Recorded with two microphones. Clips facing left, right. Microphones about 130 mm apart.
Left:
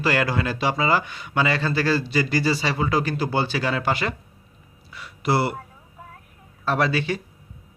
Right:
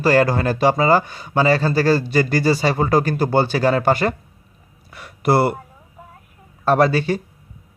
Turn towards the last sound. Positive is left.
turn(degrees=-40)  # may be behind; listen again after turning